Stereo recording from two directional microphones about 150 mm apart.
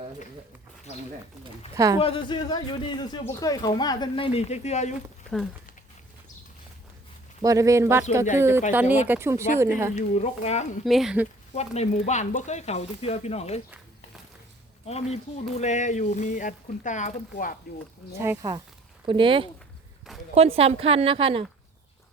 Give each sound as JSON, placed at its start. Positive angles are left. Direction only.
{"t": 1.7, "sound": "speech", "side_deg": -20}
{"t": 2.0, "sound": "speech", "side_deg": 35}
{"t": 7.4, "sound": "a woman's voice", "side_deg": -20}
{"t": 9.9, "sound": "speech", "side_deg": 50}
{"t": 10.8, "sound": "speech", "side_deg": 0}
{"t": 11.5, "sound": "speech", "side_deg": 45}
{"t": 14.8, "sound": "speech", "side_deg": 45}
{"t": 18.2, "sound": "a woman's voice", "side_deg": -15}
{"t": 19.0, "sound": "speech", "side_deg": -35}